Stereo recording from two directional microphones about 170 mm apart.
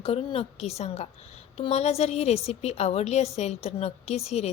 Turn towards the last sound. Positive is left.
turn(degrees=35)  # may be behind; listen again after turning